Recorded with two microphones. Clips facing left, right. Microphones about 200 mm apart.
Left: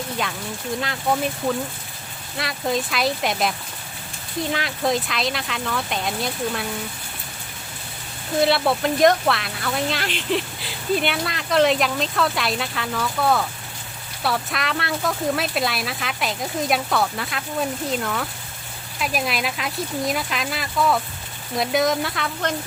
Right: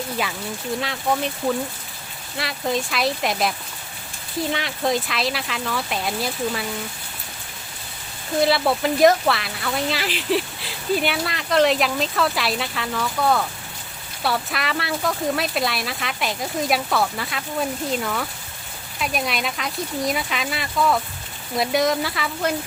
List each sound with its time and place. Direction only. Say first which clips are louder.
0.8 s speech: left 1 dB; centre (ahead or behind)
4.5 s speech: left 1 dB; centre (ahead or behind)
8.4 s speech: even; centre (ahead or behind)